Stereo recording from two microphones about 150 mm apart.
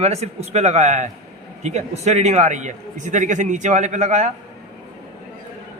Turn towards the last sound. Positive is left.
turn(degrees=-50)  # may be behind; listen again after turning